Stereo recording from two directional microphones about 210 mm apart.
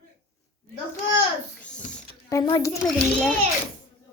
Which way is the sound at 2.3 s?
15° left (ahead or behind).